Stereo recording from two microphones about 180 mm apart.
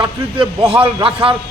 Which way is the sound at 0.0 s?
30° right (ahead or behind).